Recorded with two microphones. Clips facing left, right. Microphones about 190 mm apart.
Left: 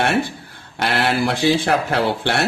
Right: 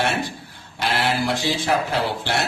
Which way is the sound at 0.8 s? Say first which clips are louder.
Left 3 dB; 60° left (ahead or behind).